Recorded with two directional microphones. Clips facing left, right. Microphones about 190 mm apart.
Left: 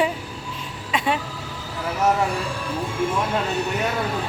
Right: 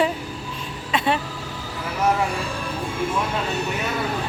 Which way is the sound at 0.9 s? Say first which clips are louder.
Right 1 dB; 10° left (ahead or behind).